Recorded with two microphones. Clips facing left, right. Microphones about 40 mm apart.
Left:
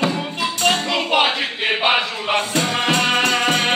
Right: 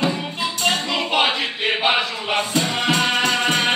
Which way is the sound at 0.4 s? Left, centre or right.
Left.